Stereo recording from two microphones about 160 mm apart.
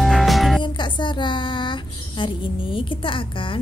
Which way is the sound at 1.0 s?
30° left (ahead or behind).